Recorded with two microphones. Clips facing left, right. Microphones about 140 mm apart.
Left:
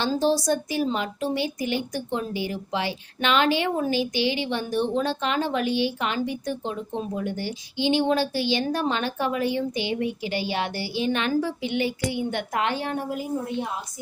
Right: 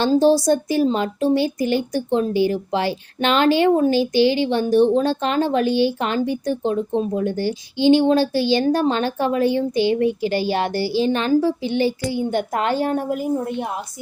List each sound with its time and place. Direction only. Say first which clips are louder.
0.3 s speech: right 7 dB; 35° right (ahead or behind)